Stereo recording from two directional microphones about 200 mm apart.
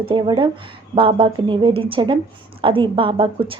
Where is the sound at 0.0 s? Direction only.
25° right (ahead or behind).